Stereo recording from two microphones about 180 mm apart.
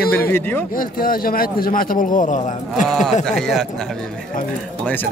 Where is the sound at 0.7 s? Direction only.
55° left (ahead or behind).